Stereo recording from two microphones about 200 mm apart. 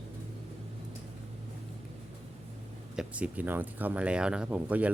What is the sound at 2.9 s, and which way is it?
Speech, 5° right (ahead or behind).